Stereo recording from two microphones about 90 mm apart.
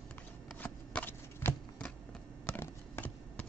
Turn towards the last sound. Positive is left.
turn(degrees=25)  # may be behind; listen again after turning